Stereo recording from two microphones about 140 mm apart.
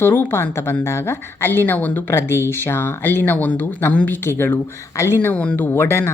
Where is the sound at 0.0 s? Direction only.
15° left (ahead or behind).